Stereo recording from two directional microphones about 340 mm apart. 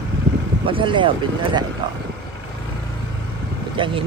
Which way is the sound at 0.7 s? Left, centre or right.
Centre.